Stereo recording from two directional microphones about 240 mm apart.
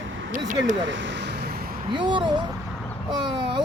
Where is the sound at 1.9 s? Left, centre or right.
Centre.